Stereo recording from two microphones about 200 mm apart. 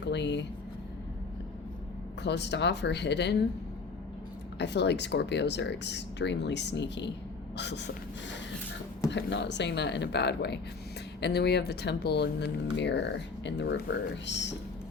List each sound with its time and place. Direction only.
0.0 s speech: 60° left (ahead or behind)
2.2 s speech: 60° left (ahead or behind)
4.5 s speech: 60° left (ahead or behind)